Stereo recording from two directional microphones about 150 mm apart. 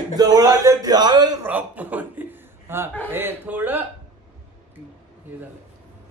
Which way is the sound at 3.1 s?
15° right (ahead or behind).